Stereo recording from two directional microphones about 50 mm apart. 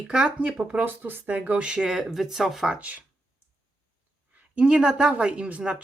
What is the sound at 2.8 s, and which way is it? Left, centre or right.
Speech, right.